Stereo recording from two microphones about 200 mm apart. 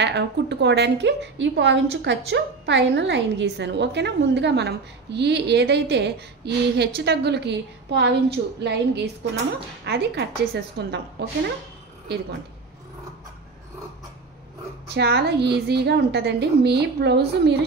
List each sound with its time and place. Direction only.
0.0 s a woman's voice: 60° right (ahead or behind)
15.0 s a woman's voice: 55° right (ahead or behind)